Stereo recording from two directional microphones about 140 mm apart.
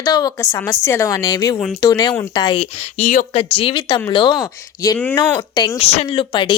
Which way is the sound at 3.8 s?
30° left (ahead or behind).